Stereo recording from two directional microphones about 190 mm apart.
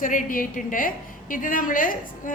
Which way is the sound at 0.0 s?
45° left (ahead or behind).